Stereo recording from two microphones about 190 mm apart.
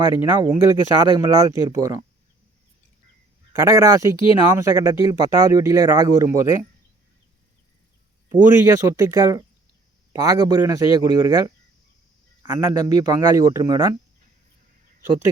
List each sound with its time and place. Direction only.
0.1 s speech: 10° right (ahead or behind)
3.5 s speech: 15° right (ahead or behind)
8.4 s a man's voice: 10° right (ahead or behind)